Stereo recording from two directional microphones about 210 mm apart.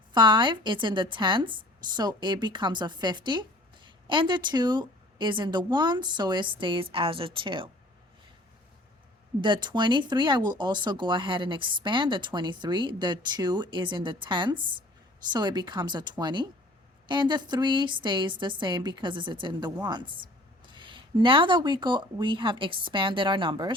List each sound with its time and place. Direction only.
0.1 s speech: 20° right (ahead or behind)
9.4 s speech: 20° right (ahead or behind)